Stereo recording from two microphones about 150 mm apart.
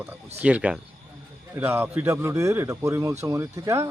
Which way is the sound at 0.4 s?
10° right (ahead or behind).